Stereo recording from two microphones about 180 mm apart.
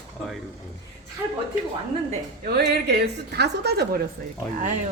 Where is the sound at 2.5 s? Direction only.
65° right (ahead or behind).